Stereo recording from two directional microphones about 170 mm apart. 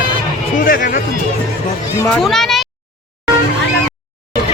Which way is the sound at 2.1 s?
Centre (ahead or behind).